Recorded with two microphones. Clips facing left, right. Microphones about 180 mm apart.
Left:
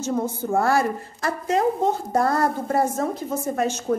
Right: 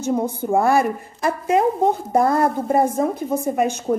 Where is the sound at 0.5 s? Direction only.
20° right (ahead or behind).